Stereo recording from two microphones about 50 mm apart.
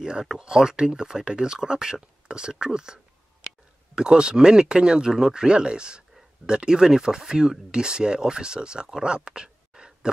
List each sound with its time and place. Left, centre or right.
0.0 s speech: centre